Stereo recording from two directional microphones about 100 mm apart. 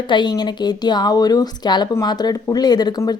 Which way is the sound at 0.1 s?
50° left (ahead or behind).